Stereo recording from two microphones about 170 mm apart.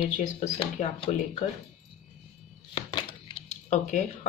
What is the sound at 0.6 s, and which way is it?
Speech, 35° left (ahead or behind).